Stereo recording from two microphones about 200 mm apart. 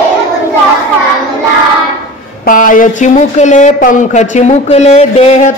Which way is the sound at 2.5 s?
40° left (ahead or behind).